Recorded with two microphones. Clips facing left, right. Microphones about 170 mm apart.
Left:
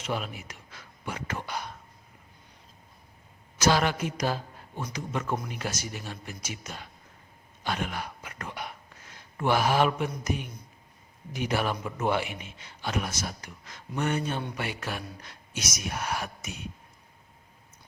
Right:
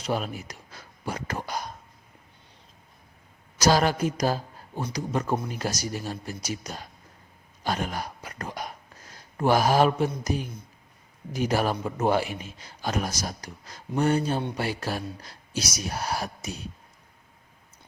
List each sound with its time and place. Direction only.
0.0 s speech: 40° right (ahead or behind)
3.6 s a man's voice: 40° right (ahead or behind)
7.6 s whispering: 40° right (ahead or behind)
10.1 s a man's voice: 35° right (ahead or behind)